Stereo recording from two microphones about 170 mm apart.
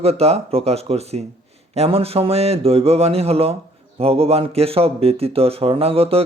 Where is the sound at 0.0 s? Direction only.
35° right (ahead or behind).